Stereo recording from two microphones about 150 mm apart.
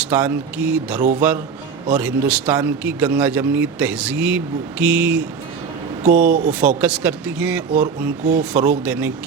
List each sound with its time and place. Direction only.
0.0 s a man's voice: 10° right (ahead or behind)
6.0 s speech: 65° right (ahead or behind)
6.5 s a man's voice: 10° right (ahead or behind)